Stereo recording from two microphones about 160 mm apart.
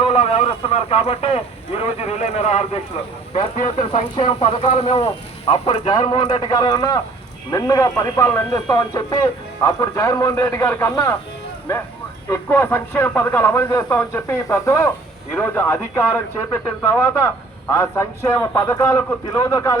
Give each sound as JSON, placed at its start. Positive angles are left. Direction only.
{"t": 0.0, "sound": "a man's voice", "side_deg": 35}
{"t": 3.9, "sound": "a man's voice", "side_deg": 40}
{"t": 12.3, "sound": "a man's voice", "side_deg": 15}